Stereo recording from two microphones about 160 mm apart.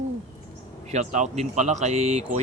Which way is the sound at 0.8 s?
45° right (ahead or behind).